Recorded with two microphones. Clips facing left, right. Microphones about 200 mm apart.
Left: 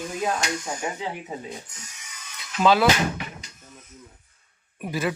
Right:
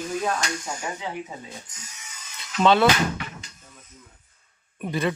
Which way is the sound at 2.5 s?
Centre (ahead or behind).